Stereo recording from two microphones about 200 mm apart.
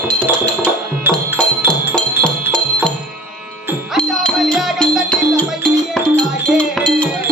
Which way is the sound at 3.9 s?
Centre (ahead or behind).